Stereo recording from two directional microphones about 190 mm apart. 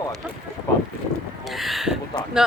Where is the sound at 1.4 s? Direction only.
Centre (ahead or behind).